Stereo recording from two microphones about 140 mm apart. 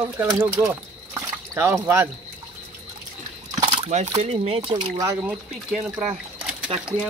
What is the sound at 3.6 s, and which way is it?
Speech, 50° right (ahead or behind).